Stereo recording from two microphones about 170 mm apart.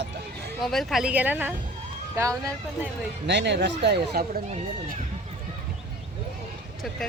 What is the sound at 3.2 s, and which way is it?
Speech, 90° right.